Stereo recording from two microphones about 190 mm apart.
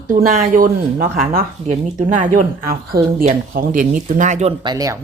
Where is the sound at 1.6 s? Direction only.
35° right (ahead or behind).